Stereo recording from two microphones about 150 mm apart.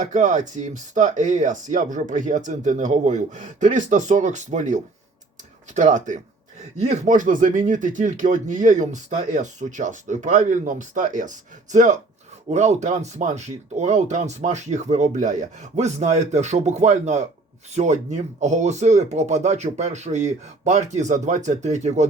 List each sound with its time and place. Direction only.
0.0 s speech: 55° right (ahead or behind)